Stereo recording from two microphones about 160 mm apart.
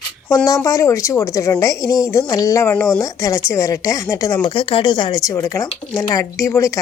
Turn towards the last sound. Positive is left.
turn(degrees=20)  # may be behind; listen again after turning